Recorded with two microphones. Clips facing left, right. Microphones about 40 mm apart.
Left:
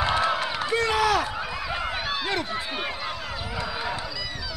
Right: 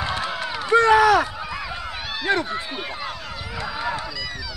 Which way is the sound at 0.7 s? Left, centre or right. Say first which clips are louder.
Right 8 dB; right.